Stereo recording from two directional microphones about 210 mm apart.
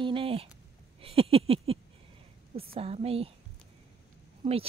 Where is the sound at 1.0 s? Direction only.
25° right (ahead or behind).